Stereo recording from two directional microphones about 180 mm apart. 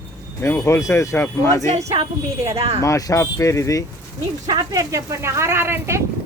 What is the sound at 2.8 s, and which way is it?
Speech, 20° left (ahead or behind).